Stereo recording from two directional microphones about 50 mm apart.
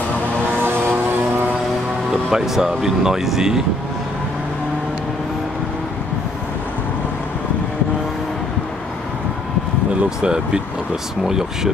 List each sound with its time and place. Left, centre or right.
0.5 s vehicle: right
2.3 s speech: centre
10.0 s speech: centre